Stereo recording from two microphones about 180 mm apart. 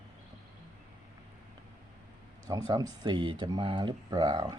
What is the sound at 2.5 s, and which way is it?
Speech, 20° right (ahead or behind).